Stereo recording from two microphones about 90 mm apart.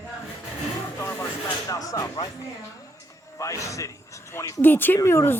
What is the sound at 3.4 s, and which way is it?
Speech, 35° left (ahead or behind).